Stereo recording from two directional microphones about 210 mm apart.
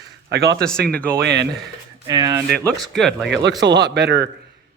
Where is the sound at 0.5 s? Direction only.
5° left (ahead or behind).